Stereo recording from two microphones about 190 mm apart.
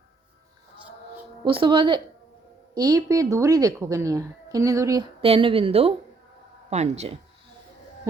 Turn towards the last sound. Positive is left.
turn(degrees=-35)  # may be behind; listen again after turning